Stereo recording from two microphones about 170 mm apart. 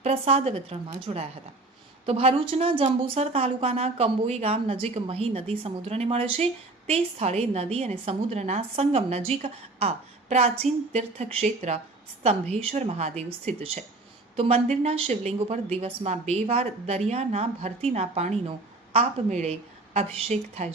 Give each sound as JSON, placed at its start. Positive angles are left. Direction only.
{"t": 0.0, "sound": "a woman's voice", "side_deg": -40}